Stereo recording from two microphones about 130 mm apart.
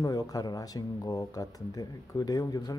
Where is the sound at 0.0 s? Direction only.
30° left (ahead or behind).